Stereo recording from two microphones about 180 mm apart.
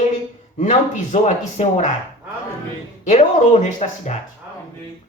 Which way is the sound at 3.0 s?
40° left (ahead or behind).